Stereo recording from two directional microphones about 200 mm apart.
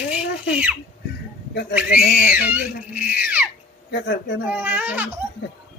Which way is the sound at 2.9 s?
5° right (ahead or behind).